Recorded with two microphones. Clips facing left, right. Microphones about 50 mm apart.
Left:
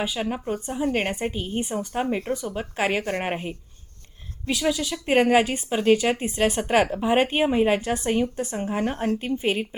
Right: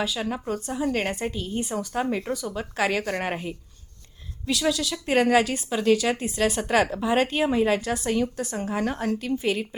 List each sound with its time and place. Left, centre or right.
0.0 s a woman's voice: left
1.6 s a woman's voice: centre